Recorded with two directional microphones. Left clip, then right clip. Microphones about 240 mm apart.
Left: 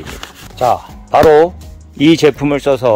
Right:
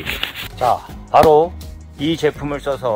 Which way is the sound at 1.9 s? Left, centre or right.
Left.